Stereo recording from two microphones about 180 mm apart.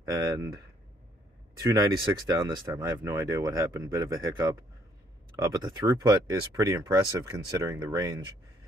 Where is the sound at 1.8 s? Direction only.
20° right (ahead or behind).